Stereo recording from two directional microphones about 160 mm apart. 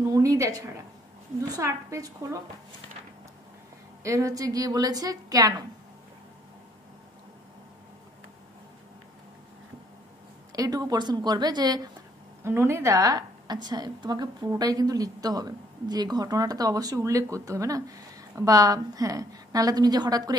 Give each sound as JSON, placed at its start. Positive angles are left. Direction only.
{"t": 0.0, "sound": "a woman's voice", "side_deg": -20}
{"t": 4.0, "sound": "a woman's voice", "side_deg": -20}
{"t": 10.5, "sound": "a woman's voice", "side_deg": -25}